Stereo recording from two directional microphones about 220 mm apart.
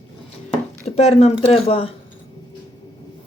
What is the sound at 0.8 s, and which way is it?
Speech, 30° left (ahead or behind).